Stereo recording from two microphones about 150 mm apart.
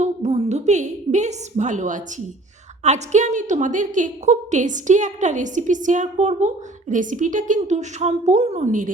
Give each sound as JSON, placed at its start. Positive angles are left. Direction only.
{"t": 0.0, "sound": "a woman's voice", "side_deg": -45}